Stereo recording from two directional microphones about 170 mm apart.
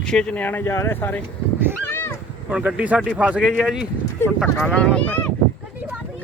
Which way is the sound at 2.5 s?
5° right (ahead or behind).